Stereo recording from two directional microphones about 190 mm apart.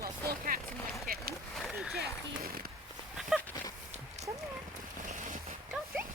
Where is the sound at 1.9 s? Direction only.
50° right (ahead or behind).